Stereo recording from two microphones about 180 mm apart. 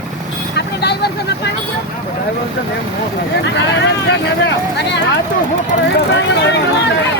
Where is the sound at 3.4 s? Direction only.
75° left (ahead or behind).